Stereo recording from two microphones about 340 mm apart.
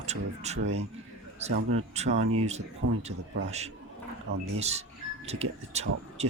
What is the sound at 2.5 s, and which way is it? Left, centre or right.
Speech, centre.